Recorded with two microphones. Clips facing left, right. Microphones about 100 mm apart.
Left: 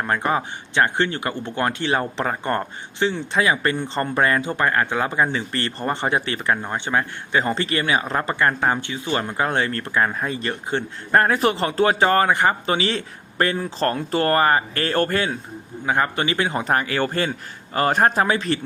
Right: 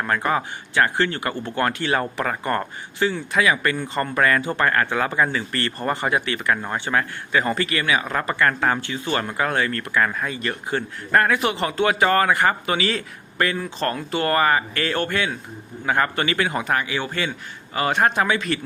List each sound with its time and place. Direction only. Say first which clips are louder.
0.0 s speech: even; 20° left (ahead or behind)
6.6 s speech: even; 20° left (ahead or behind); by 15.4 s 35° left (ahead or behind)
15.9 s a man's voice: even; 20° left (ahead or behind)